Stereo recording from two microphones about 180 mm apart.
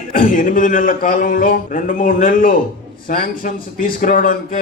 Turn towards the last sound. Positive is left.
turn(degrees=50)  # may be behind; listen again after turning